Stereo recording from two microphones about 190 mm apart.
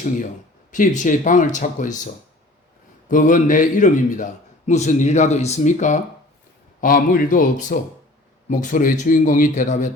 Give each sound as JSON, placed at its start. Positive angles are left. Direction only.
{"t": 0.7, "sound": "speech", "side_deg": 45}
{"t": 3.1, "sound": "a man's voice", "side_deg": 45}